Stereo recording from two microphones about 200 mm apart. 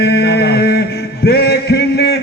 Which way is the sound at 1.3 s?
55° left (ahead or behind).